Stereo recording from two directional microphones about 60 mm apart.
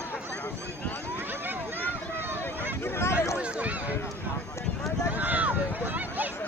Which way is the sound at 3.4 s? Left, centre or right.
Right.